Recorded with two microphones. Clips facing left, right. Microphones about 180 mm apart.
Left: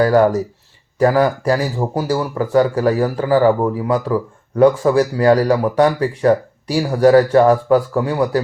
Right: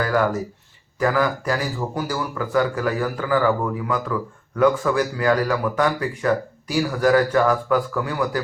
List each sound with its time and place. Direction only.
0.0 s speech: 35° left (ahead or behind)